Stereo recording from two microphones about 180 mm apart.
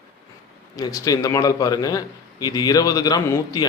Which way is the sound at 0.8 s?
20° left (ahead or behind).